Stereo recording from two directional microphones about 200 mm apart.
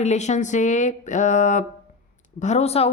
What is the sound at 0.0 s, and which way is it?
Speech, 35° left (ahead or behind).